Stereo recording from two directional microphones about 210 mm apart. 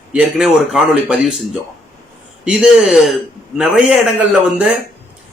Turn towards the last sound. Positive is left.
turn(degrees=-5)  # may be behind; listen again after turning